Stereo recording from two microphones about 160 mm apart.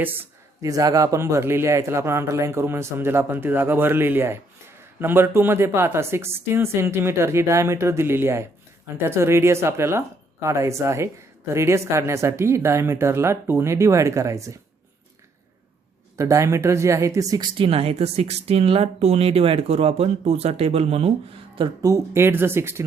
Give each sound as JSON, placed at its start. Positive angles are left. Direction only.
{"t": 0.0, "sound": "speech", "side_deg": -15}
{"t": 16.1, "sound": "speech", "side_deg": -20}
{"t": 21.5, "sound": "speech", "side_deg": -25}